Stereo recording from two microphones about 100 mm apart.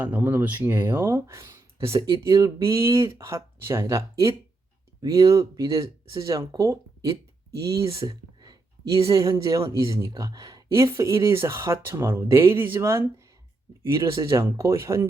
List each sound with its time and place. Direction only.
0.0 s speech: 15° right (ahead or behind)
2.0 s speech: 40° right (ahead or behind)
14.0 s speech: 35° right (ahead or behind)